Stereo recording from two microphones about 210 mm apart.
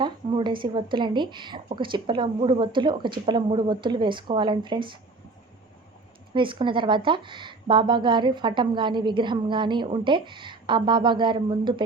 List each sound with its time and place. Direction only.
0.0 s speech: 20° right (ahead or behind)
6.3 s speech: 25° right (ahead or behind)